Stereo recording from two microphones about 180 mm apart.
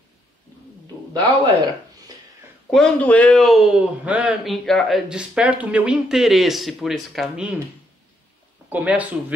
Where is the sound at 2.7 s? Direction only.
5° left (ahead or behind).